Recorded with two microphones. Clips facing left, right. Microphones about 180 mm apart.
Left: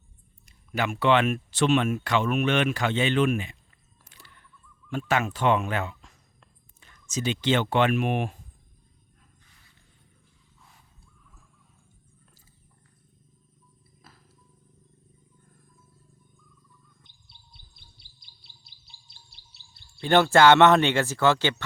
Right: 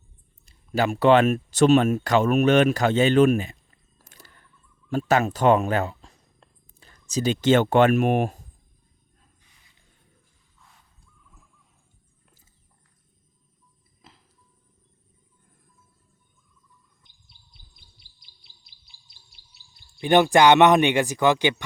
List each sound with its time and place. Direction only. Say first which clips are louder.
0.4 s speech: right 5 dB; 35° right (ahead or behind)
4.1 s a sound: right 2 dB; 40° right (ahead or behind)
4.9 s purr: right 5 dB; 40° right (ahead or behind)
7.1 s speech: right 6 dB; 40° right (ahead or behind)
10.6 s a sound: even; centre (ahead or behind)
20.0 s speech: right 2 dB; 15° right (ahead or behind)